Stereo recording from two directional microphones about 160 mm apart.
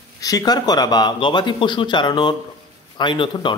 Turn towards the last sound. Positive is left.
turn(degrees=30)  # may be behind; listen again after turning